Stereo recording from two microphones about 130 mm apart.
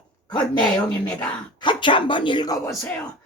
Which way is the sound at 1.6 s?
40° left (ahead or behind).